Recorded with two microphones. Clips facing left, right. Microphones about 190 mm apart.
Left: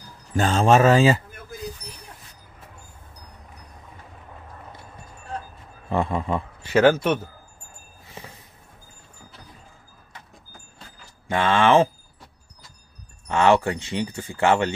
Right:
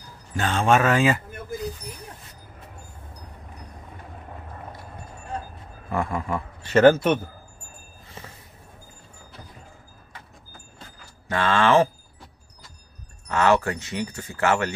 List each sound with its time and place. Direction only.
0.4 s speech: 35° left (ahead or behind)
5.9 s speech: 25° left (ahead or behind)
6.6 s speech: centre (ahead or behind)
11.2 s speech: 20° left (ahead or behind)
13.3 s speech: 25° left (ahead or behind)